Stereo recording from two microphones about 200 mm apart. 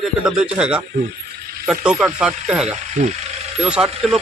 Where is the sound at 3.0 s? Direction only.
35° right (ahead or behind).